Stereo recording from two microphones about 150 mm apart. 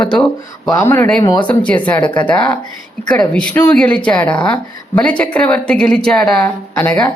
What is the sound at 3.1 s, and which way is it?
A woman's voice, 5° left (ahead or behind).